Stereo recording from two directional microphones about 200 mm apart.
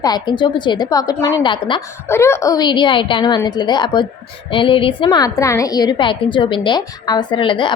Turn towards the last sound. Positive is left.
turn(degrees=25)  # may be behind; listen again after turning